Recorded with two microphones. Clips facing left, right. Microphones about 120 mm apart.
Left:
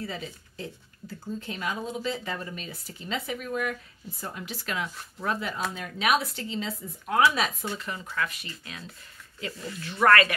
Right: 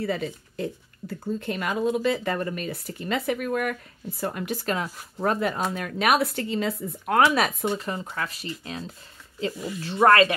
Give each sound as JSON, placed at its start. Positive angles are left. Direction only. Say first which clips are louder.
{"t": 0.0, "sound": "speech", "louder": "right 8 dB", "side_deg": -60}
{"t": 7.8, "sound": "speech", "louder": "right 2 dB", "side_deg": -35}
{"t": 9.5, "sound": "speech", "louder": "right 5 dB", "side_deg": -15}
{"t": 9.8, "sound": "speech", "louder": "right 3 dB", "side_deg": -30}